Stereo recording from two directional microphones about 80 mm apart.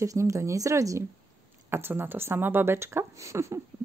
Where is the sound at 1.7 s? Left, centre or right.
Right.